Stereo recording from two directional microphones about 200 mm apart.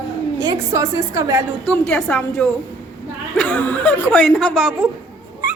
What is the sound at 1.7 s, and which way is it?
Speech, 5° left (ahead or behind).